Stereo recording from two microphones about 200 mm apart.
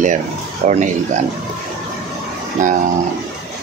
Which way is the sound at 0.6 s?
40° right (ahead or behind).